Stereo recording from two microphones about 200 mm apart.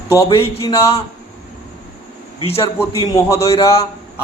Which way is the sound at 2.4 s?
30° left (ahead or behind).